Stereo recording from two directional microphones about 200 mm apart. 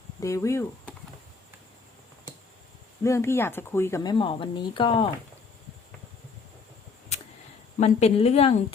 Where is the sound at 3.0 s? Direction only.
15° left (ahead or behind).